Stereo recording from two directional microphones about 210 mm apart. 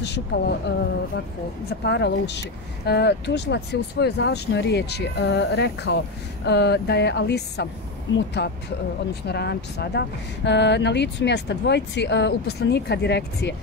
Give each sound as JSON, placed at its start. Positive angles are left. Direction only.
{"t": 0.0, "sound": "speech", "side_deg": 55}